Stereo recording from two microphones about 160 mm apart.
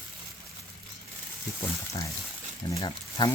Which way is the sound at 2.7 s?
25° left (ahead or behind).